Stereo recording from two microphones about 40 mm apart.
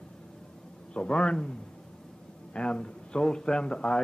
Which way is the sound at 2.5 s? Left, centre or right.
Left.